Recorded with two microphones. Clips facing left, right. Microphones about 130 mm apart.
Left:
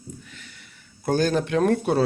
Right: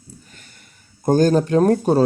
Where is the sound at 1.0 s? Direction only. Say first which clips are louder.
Right 6 dB; 40° right (ahead or behind).